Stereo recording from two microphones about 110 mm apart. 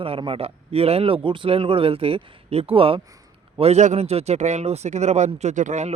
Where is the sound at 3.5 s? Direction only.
75° right (ahead or behind).